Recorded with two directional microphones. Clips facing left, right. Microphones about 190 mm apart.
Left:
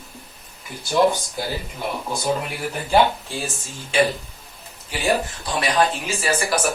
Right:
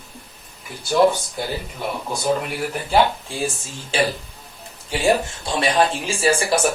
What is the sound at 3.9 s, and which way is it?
Speech, 30° right (ahead or behind).